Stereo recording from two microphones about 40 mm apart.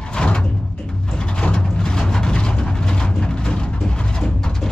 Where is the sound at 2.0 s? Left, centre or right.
Centre.